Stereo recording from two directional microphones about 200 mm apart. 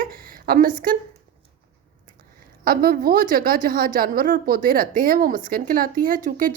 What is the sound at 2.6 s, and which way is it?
A woman's voice, 45° right (ahead or behind).